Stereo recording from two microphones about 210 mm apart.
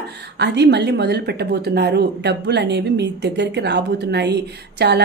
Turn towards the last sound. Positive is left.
turn(degrees=-50)  # may be behind; listen again after turning